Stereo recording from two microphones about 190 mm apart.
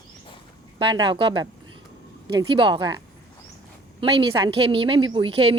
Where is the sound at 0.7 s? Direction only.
25° right (ahead or behind).